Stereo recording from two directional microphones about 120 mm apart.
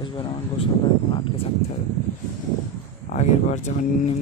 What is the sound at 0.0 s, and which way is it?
Speech, 45° left (ahead or behind).